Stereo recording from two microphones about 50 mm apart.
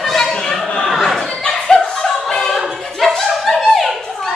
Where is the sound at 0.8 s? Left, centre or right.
Centre.